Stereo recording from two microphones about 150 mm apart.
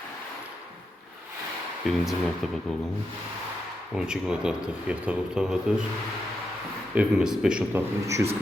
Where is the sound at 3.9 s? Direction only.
5° right (ahead or behind).